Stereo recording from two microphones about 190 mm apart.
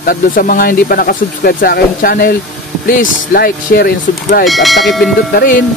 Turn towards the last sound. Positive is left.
turn(degrees=55)  # may be behind; listen again after turning